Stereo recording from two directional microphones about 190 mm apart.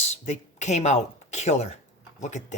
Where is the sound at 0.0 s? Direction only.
35° left (ahead or behind).